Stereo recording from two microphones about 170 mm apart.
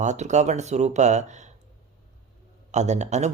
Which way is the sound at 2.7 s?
45° right (ahead or behind).